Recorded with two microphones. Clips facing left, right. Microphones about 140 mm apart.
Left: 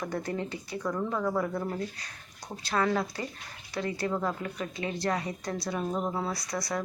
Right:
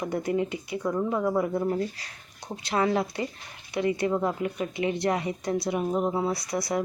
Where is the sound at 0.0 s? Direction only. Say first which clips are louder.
Right 6 dB; 20° right (ahead or behind).